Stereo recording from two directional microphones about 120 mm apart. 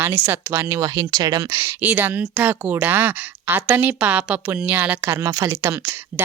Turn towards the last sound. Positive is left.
turn(degrees=-20)  # may be behind; listen again after turning